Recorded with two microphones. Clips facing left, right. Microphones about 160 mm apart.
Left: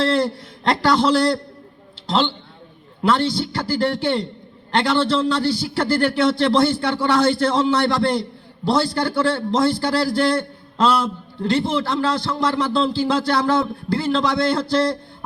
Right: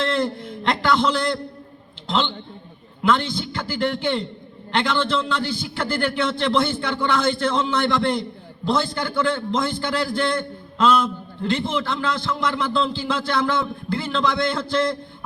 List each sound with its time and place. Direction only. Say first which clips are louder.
0.0 s a man's voice: left 3 dB; 35° left (ahead or behind)